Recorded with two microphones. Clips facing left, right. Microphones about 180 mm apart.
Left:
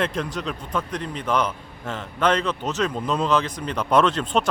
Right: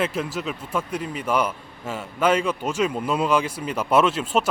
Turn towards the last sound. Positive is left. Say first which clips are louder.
# even
turn(degrees=-5)  # may be behind; listen again after turning